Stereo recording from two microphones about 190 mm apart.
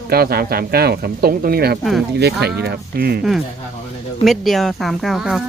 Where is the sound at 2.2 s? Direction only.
60° right (ahead or behind).